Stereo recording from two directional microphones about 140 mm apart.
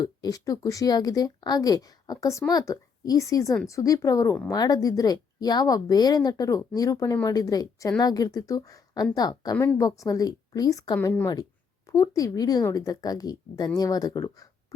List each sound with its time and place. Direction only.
0.0 s speech: 25° left (ahead or behind)